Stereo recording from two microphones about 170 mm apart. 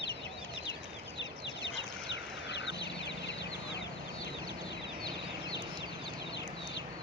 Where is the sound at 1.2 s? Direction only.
90° left.